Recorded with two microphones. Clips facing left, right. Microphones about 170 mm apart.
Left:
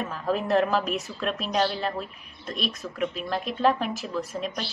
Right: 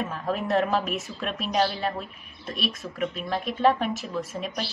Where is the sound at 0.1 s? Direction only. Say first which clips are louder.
Left 4 dB; centre (ahead or behind).